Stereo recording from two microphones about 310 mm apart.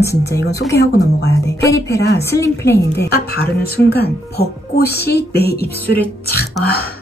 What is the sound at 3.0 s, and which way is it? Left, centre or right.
Speech, left.